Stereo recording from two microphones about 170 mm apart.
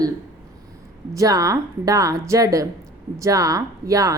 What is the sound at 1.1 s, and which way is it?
A woman's voice, 20° right (ahead or behind).